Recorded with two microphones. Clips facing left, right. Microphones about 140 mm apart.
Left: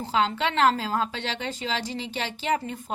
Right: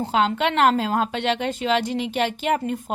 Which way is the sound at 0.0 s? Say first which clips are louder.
Right 4 dB; 60° right (ahead or behind).